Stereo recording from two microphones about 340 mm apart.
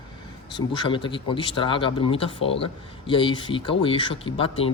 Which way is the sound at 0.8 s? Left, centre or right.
Centre.